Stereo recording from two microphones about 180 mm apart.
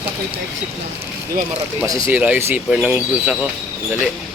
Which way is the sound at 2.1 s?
10° right (ahead or behind).